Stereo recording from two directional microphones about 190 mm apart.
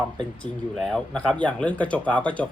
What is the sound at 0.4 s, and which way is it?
Speech, 5° left (ahead or behind).